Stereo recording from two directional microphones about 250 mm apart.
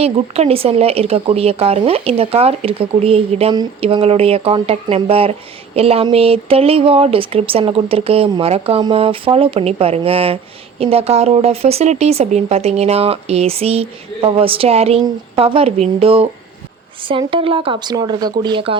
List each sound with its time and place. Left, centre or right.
0.0 s speech: right